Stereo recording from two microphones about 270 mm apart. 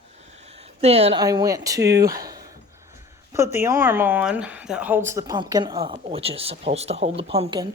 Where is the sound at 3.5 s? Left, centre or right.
Centre.